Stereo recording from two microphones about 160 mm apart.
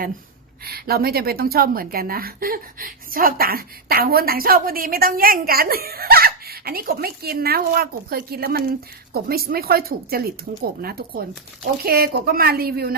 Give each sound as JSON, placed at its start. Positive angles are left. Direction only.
{"t": 0.6, "sound": "a woman's voice", "side_deg": -70}